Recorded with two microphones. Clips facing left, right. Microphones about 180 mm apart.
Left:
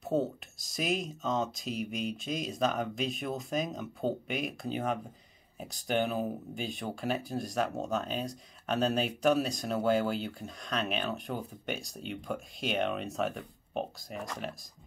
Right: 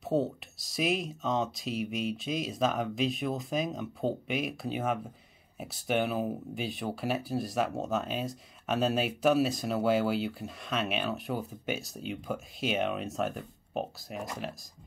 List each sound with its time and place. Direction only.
0.0 s speech: centre (ahead or behind)